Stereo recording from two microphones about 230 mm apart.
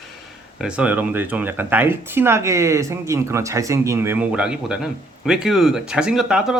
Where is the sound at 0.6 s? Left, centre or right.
Centre.